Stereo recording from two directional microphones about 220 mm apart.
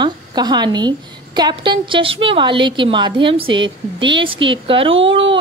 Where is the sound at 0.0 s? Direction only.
20° right (ahead or behind).